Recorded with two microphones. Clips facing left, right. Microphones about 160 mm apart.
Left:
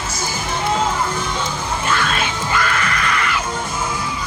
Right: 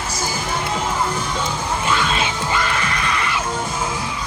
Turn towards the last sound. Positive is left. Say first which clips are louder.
# left 1 dB
turn(degrees=-25)  # may be behind; listen again after turning